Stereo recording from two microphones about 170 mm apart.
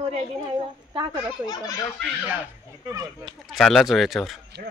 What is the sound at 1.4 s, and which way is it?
Speech, 25° left (ahead or behind).